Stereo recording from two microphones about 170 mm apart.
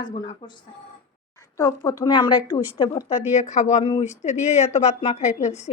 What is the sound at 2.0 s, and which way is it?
A woman's voice, 25° left (ahead or behind).